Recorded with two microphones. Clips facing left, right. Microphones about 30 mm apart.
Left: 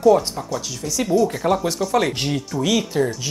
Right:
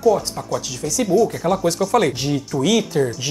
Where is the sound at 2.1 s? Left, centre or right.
Left.